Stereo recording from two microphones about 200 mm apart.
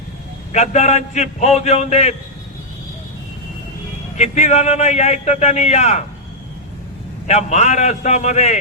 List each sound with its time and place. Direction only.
0.5 s a man's voice: 35° left (ahead or behind)
4.2 s a man's voice: 35° left (ahead or behind)
7.3 s a man's voice: 35° left (ahead or behind)